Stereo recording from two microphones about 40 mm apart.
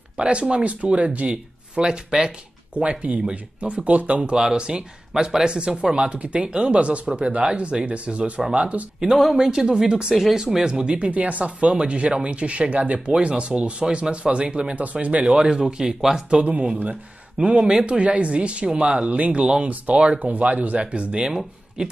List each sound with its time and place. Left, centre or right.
0.2 s speech: right
1.8 s speech: right
2.7 s speech: right
4.2 s speech: centre
9.4 s speech: centre
10.1 s speech: centre
10.4 s speech: centre
14.8 s speech: right
15.2 s speech: centre
17.4 s speech: right